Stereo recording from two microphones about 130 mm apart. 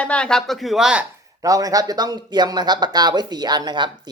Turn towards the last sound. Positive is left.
turn(degrees=-35)  # may be behind; listen again after turning